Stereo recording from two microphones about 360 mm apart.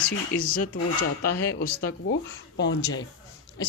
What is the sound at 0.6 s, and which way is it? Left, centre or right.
Speech, left.